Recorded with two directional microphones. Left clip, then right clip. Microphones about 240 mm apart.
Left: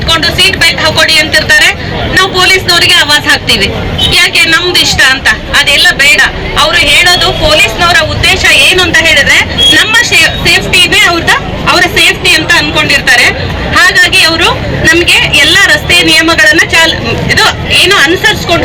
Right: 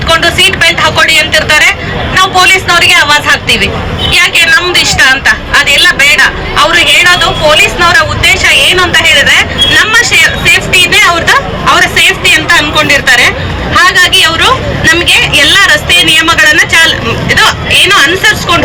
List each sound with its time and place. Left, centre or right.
0.1 s a sound: right
2.1 s vehicle: right
4.1 s a man's voice: right
9.7 s vehicle: right
10.9 s a man's voice: right